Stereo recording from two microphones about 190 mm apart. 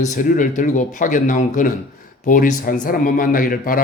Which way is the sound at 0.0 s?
40° left (ahead or behind).